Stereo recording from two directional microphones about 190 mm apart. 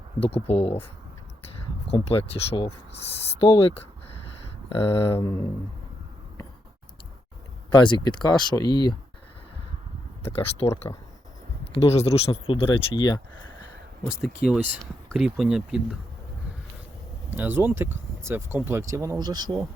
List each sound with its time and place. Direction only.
0.2 s speech: 30° left (ahead or behind)
1.9 s speech: 30° left (ahead or behind)
4.8 s speech: 30° left (ahead or behind)
5.1 s a sound: 15° left (ahead or behind)
7.7 s speech: 25° left (ahead or behind)
10.2 s speech: 30° left (ahead or behind)
14.4 s speech: 5° right (ahead or behind)
17.3 s speech: 10° right (ahead or behind)